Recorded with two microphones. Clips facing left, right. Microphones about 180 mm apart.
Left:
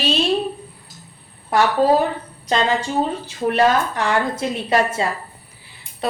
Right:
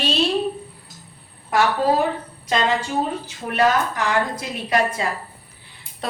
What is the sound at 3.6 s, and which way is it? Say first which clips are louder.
A woman's voice: even; 30° left (ahead or behind).